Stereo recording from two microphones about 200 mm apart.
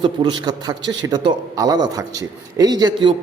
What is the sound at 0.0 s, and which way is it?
A man's voice, 20° right (ahead or behind).